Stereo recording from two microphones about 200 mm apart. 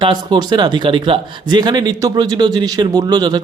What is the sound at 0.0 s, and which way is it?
Speech, 25° right (ahead or behind).